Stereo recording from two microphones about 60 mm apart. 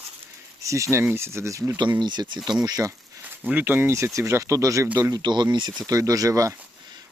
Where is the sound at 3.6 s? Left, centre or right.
Right.